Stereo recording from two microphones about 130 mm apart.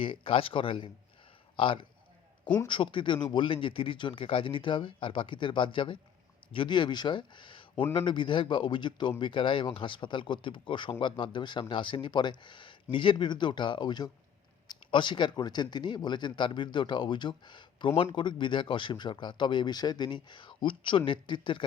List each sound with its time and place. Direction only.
0.0 s a man's voice: 45° left (ahead or behind)